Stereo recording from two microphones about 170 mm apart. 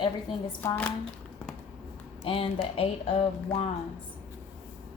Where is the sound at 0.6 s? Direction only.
10° left (ahead or behind).